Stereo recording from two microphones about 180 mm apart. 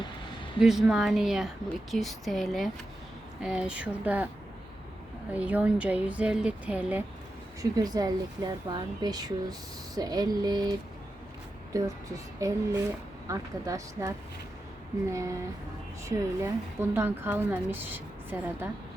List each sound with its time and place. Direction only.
0.6 s a woman's voice: 5° right (ahead or behind)
5.3 s a woman's voice: 10° right (ahead or behind)
7.6 s a woman's voice: 20° right (ahead or behind)